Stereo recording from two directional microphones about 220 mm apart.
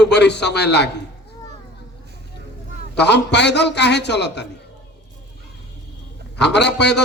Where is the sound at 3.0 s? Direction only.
50° left (ahead or behind).